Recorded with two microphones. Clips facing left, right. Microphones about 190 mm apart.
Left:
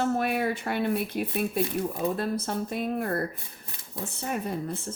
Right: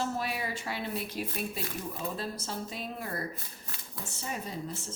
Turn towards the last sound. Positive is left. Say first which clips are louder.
# left 7 dB
turn(degrees=60)  # may be behind; listen again after turning